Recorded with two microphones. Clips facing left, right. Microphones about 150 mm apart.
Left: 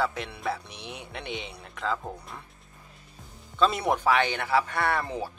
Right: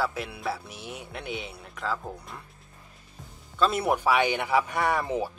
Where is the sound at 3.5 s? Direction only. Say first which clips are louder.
Even; 5° right (ahead or behind).